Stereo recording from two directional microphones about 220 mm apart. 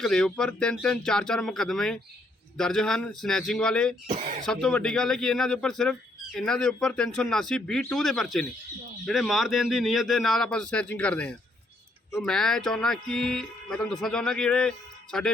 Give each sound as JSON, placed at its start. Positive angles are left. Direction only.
{"t": 0.0, "sound": "speech", "side_deg": 5}
{"t": 4.0, "sound": "speech", "side_deg": -30}
{"t": 4.4, "sound": "speech", "side_deg": 5}